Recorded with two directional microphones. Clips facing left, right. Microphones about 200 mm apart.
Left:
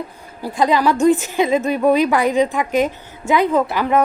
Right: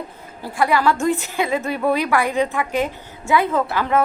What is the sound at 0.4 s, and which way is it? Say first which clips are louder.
A woman's voice: left 2 dB; 20° left (ahead or behind).